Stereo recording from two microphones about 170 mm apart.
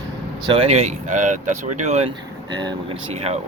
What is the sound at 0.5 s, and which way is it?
Speech, 35° right (ahead or behind).